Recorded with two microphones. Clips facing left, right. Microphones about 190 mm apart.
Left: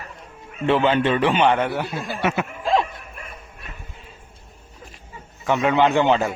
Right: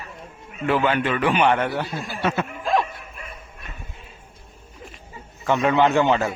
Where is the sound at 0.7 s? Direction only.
25° left (ahead or behind).